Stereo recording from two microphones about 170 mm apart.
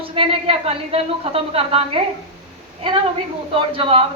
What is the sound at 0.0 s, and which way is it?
A woman's voice, 35° right (ahead or behind).